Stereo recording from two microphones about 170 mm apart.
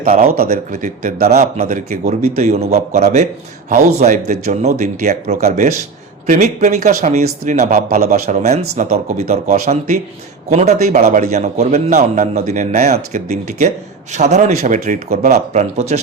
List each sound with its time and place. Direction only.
0.0 s speech: 55° right (ahead or behind)
0.7 s speech: 50° right (ahead or behind)
1.5 s a man's voice: 40° right (ahead or behind)
15.3 s a man's voice: 40° right (ahead or behind)